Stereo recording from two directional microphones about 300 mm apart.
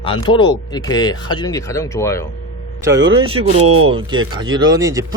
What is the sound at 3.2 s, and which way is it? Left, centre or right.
Speech, centre.